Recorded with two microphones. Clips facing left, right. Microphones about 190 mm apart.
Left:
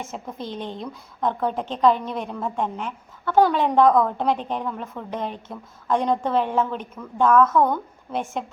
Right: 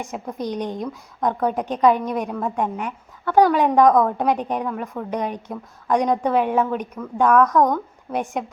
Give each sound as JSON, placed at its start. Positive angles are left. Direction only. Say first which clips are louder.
{"t": 0.0, "sound": "a woman's voice", "louder": "right 4 dB", "side_deg": -15}
{"t": 7.5, "sound": "speech", "louder": "right 2 dB", "side_deg": 5}
{"t": 8.1, "sound": "a woman's voice", "louder": "right 3 dB", "side_deg": -15}